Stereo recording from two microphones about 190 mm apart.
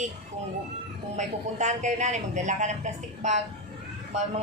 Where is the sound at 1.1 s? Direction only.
40° right (ahead or behind).